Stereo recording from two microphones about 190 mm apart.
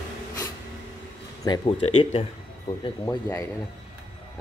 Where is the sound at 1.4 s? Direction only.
25° left (ahead or behind).